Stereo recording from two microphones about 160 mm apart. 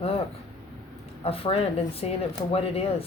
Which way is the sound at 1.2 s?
35° left (ahead or behind).